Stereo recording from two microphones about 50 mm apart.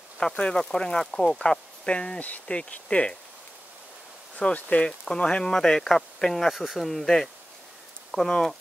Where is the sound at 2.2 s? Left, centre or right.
Left.